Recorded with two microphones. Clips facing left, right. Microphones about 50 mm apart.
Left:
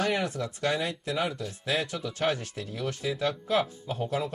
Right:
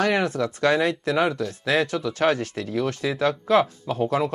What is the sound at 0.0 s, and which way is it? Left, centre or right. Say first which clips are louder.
Speech: right 6 dB; right.